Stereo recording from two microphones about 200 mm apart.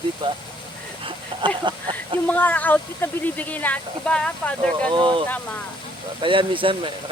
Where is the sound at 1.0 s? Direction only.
25° right (ahead or behind).